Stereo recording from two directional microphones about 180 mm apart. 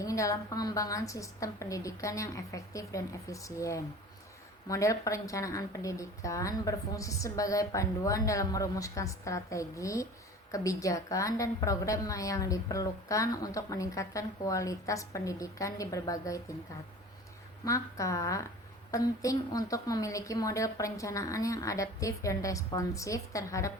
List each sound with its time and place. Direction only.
0.0 s a woman's voice: 20° left (ahead or behind)
17.7 s a woman's voice: 20° left (ahead or behind)